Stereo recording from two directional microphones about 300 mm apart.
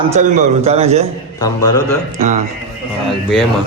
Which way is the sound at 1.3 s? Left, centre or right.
Centre.